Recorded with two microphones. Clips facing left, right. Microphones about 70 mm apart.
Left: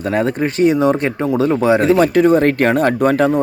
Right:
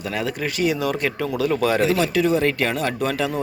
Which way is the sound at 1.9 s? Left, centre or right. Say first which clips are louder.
Left 8 dB; left.